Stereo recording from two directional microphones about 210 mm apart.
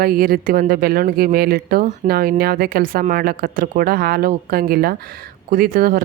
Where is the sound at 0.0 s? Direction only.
45° right (ahead or behind).